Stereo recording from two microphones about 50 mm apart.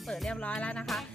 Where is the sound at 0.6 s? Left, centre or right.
Left.